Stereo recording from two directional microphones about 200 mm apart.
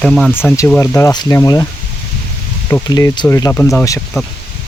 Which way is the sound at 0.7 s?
10° left (ahead or behind).